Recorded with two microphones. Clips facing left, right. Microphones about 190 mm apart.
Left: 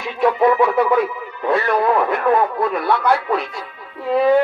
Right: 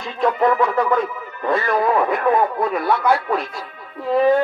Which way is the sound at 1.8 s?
10° right (ahead or behind).